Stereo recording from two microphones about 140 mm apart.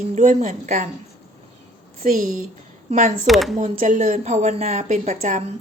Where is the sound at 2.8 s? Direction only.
60° right (ahead or behind).